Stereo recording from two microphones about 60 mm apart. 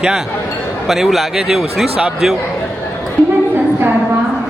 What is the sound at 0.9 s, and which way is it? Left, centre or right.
Speech, centre.